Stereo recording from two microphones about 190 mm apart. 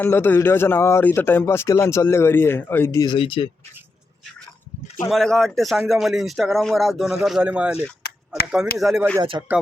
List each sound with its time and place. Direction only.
0.0 s speech: 10° left (ahead or behind); by 3.5 s 30° left (ahead or behind)
5.0 s speech: centre (ahead or behind)
8.8 s speech: centre (ahead or behind)
9.3 s speech: 20° right (ahead or behind)